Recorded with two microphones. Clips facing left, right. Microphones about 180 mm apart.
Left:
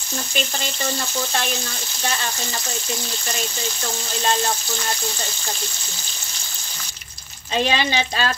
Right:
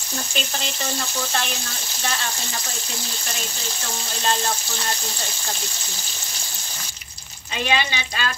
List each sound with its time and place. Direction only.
7.5 s speech: 35° left (ahead or behind)